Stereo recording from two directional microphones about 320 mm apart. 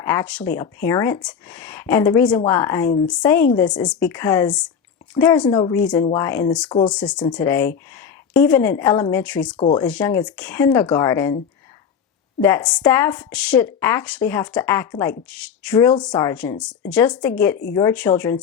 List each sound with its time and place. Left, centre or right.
0.0 s speech: centre
5.8 s speech: centre
9.6 s speech: centre
9.8 s speech: centre
12.4 s speech: centre